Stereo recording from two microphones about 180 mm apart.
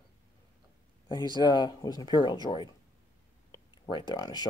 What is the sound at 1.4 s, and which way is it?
Speech, 25° left (ahead or behind).